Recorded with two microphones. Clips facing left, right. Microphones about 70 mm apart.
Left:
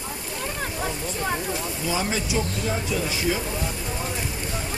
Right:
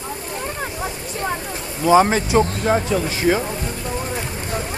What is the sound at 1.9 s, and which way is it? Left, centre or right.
Speech, right.